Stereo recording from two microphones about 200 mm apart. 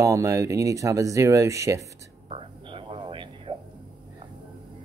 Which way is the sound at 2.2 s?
25° right (ahead or behind).